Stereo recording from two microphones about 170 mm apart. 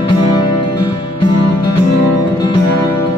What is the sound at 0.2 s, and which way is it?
Music, 25° left (ahead or behind).